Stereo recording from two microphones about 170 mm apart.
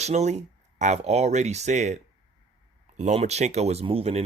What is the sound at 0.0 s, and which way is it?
Speech, 40° right (ahead or behind).